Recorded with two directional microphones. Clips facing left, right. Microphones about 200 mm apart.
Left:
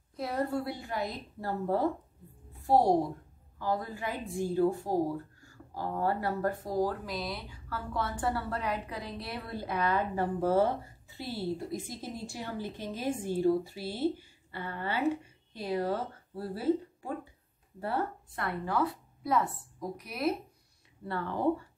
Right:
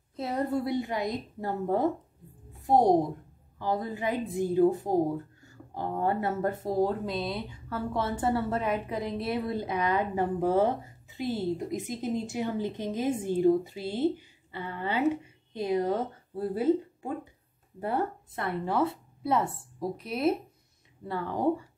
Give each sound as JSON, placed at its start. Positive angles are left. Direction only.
{"t": 0.1, "sound": "a woman's voice", "side_deg": -20}
{"t": 21.1, "sound": "speech", "side_deg": -15}